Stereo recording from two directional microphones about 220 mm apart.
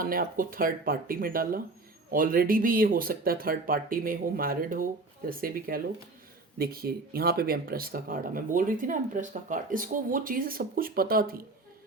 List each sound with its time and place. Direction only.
0.0 s speech: 40° right (ahead or behind)